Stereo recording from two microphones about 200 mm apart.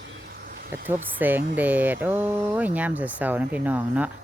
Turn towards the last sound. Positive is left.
turn(degrees=-5)  # may be behind; listen again after turning